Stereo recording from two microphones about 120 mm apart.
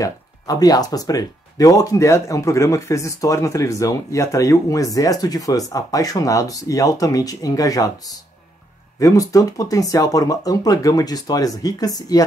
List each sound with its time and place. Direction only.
0.0 s speech: 30° left (ahead or behind)